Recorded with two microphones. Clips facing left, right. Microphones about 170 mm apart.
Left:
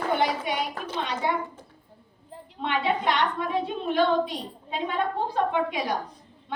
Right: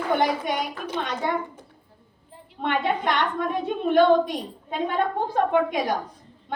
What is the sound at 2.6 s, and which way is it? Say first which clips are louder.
A woman's voice: right 2 dB; 50° right (ahead or behind).